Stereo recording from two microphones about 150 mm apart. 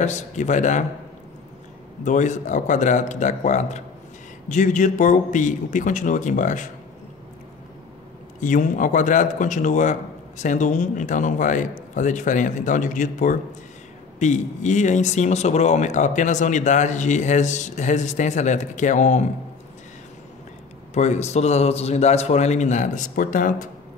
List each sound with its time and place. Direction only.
0.0 s speech: 50° left (ahead or behind)
2.0 s a man's voice: 55° left (ahead or behind)
8.4 s a man's voice: 60° left (ahead or behind)
20.9 s speech: 50° left (ahead or behind)